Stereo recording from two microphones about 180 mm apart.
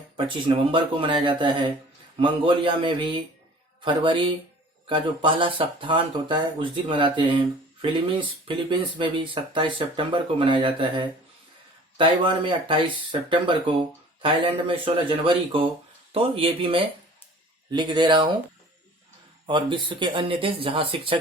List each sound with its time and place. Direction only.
0.4 s speech: 30° right (ahead or behind)
14.7 s speech: 30° right (ahead or behind)
19.5 s speech: 25° right (ahead or behind)